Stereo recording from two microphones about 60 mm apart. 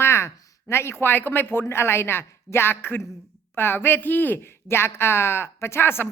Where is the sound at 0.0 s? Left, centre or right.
Left.